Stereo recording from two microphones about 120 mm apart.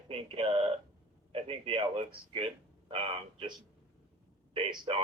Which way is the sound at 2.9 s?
40° right (ahead or behind).